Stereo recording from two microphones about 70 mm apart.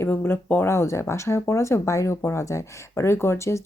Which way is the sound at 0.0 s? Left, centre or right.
Left.